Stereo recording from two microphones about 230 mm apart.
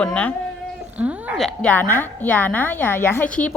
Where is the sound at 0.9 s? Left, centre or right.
Centre.